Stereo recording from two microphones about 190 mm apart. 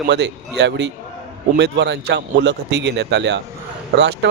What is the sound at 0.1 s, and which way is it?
Speech, 65° right (ahead or behind).